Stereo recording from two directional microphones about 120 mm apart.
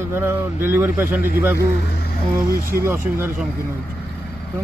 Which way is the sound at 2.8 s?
20° right (ahead or behind).